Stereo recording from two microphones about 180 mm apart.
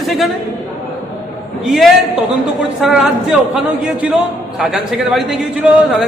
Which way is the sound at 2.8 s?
Centre (ahead or behind).